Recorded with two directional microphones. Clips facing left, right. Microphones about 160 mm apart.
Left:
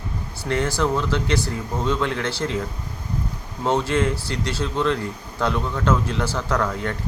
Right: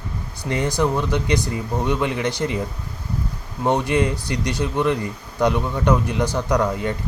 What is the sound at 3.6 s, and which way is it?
Speech, 15° right (ahead or behind).